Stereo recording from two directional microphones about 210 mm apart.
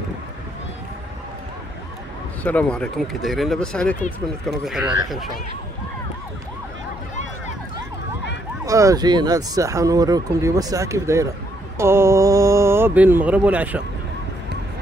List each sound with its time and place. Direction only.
2.4 s speech: 5° left (ahead or behind)
8.6 s speech: 15° right (ahead or behind)